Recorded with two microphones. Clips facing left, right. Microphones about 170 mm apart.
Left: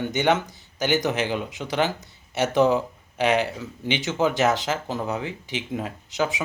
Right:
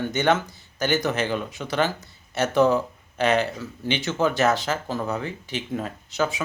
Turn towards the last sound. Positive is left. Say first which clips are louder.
# even
turn(degrees=15)  # may be behind; listen again after turning